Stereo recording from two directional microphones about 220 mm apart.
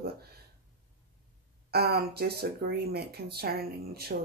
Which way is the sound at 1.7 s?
45° right (ahead or behind).